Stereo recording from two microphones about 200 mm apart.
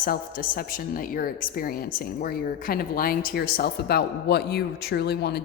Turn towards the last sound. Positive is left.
turn(degrees=55)  # may be behind; listen again after turning